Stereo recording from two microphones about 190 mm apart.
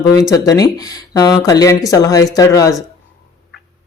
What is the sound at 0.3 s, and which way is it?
Speech, 20° left (ahead or behind).